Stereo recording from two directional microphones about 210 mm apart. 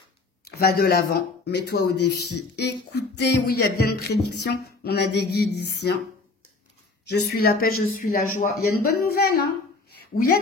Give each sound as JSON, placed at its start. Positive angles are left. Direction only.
{"t": 0.5, "sound": "speech", "side_deg": 45}
{"t": 7.1, "sound": "a woman's voice", "side_deg": 45}